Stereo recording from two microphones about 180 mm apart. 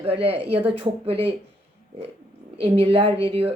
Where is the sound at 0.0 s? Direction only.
30° right (ahead or behind).